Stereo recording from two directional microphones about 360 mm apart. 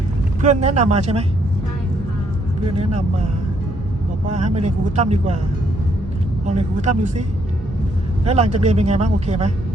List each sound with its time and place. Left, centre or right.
0.4 s speech: centre
4.3 s speech: centre
6.4 s speech: centre